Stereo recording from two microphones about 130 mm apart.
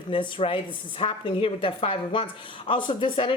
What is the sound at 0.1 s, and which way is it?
A woman's voice, 45° left (ahead or behind).